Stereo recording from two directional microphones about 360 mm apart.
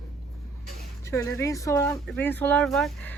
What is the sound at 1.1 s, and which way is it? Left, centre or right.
Speech, centre.